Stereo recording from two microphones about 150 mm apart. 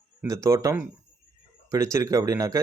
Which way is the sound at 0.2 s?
20° right (ahead or behind).